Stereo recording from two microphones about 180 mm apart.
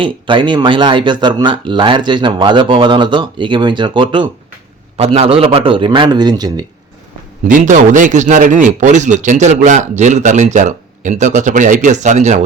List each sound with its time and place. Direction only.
0.0 s speech: 25° right (ahead or behind)
7.4 s a man's voice: 45° right (ahead or behind)